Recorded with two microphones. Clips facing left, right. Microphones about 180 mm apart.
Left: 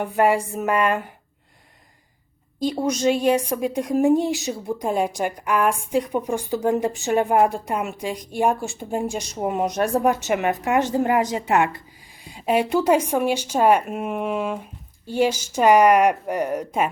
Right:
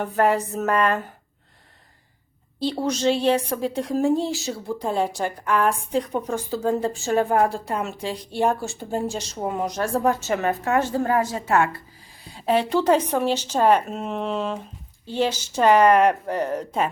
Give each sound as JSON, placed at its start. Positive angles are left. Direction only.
{"t": 0.0, "sound": "a woman's voice", "side_deg": 10}
{"t": 2.6, "sound": "a woman's voice", "side_deg": 15}